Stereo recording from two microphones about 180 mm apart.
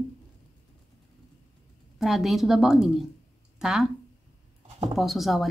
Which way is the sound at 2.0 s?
Centre (ahead or behind).